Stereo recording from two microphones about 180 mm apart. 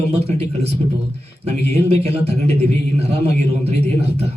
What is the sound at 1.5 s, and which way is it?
A man's voice, 35° right (ahead or behind).